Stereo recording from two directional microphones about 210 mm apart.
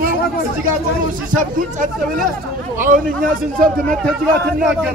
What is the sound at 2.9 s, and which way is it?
Speech, 40° right (ahead or behind).